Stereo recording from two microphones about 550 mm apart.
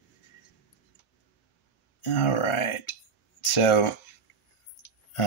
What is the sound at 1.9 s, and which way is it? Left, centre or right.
Speech, left.